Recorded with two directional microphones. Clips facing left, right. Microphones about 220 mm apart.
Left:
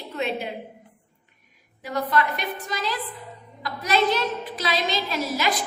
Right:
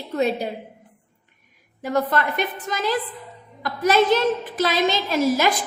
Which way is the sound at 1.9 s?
50° right (ahead or behind).